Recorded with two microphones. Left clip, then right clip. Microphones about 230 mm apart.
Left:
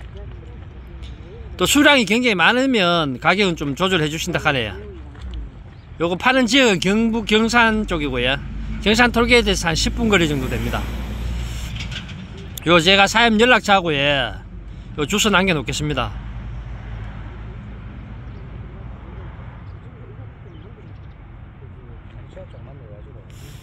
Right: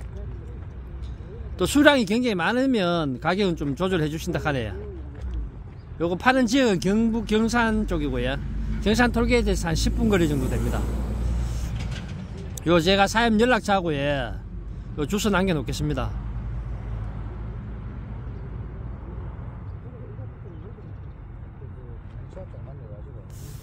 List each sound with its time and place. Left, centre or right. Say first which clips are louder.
1.6 s speech: left 4 dB; centre
5.9 s speech: left 4 dB; centre
10.8 s vehicle: left 3 dB; right
12.5 s speech: left 6 dB; centre